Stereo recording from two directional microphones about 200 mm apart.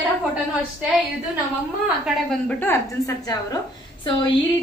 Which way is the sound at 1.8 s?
Centre (ahead or behind).